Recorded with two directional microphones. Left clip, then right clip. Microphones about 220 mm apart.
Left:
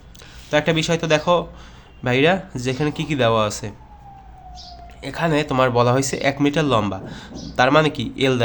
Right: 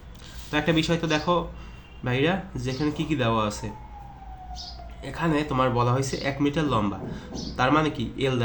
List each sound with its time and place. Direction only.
0.5 s speech: 45° left (ahead or behind)
5.0 s speech: 50° left (ahead or behind)